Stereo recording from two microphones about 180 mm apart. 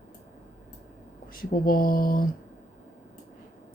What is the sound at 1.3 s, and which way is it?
Speech, 50° left (ahead or behind).